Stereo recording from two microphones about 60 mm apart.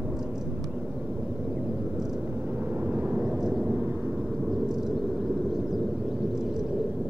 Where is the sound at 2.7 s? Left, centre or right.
Right; by 3.7 s centre.